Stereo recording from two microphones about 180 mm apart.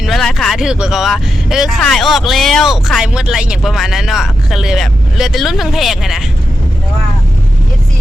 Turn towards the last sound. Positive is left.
turn(degrees=0)  # may be behind; listen again after turning